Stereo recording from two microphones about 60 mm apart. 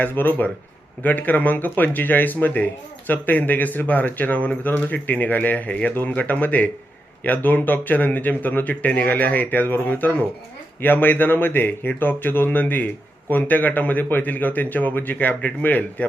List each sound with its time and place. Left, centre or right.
0.0 s speech: left